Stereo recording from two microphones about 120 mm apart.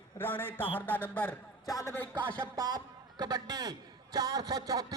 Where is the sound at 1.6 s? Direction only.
30° left (ahead or behind).